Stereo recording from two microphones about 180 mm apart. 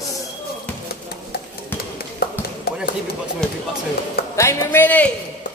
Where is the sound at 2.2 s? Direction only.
60° left (ahead or behind).